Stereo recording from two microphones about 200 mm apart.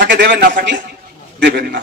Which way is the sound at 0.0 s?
60° right (ahead or behind).